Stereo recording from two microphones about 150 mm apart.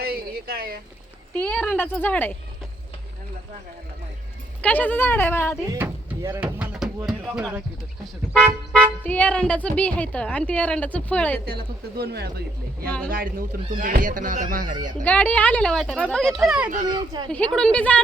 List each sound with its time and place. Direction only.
0.0 s a sound: 85° right
1.3 s speech: 10° left (ahead or behind)
4.6 s speech: 10° left (ahead or behind)
5.6 s speech: 20° right (ahead or behind)
8.3 s speech: 10° left (ahead or behind)
11.4 s speech: 90° right
13.1 s speech: 70° right (ahead or behind)
15.0 s a child's voice: 10° left (ahead or behind)
16.9 s speech: 30° right (ahead or behind)
17.2 s speech: 5° left (ahead or behind)